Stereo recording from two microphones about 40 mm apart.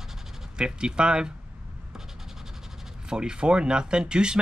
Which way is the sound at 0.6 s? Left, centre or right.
Right.